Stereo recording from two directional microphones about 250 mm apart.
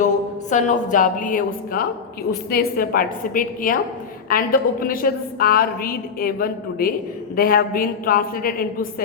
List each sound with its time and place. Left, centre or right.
0.5 s a woman's voice: left